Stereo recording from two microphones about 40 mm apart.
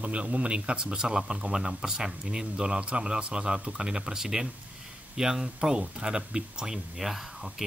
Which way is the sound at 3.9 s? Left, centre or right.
Centre.